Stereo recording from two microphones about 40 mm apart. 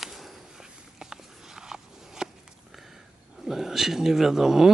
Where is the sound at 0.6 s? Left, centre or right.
Centre.